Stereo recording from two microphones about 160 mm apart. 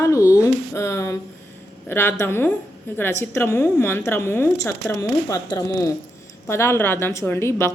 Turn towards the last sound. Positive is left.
turn(degrees=15)  # may be behind; listen again after turning